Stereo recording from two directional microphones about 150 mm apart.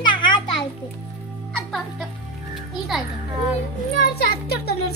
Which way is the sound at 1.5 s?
Centre (ahead or behind).